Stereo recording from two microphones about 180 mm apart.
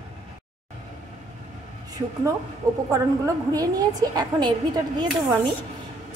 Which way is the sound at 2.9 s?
20° right (ahead or behind).